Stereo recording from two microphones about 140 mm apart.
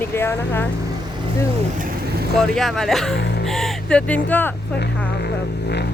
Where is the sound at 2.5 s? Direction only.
5° left (ahead or behind).